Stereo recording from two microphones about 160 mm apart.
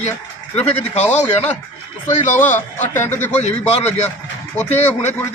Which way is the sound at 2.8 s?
15° left (ahead or behind).